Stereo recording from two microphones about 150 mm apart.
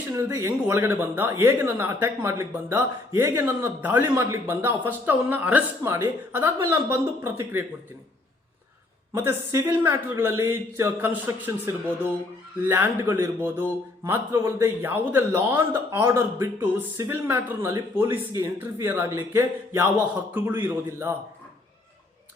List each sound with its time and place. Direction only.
0.2 s speech: 20° right (ahead or behind)
9.1 s speech: 20° right (ahead or behind)